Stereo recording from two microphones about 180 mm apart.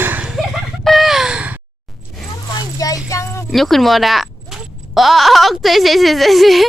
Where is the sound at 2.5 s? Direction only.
20° left (ahead or behind).